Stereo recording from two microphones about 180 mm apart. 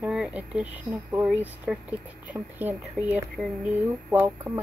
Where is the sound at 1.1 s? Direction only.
10° right (ahead or behind).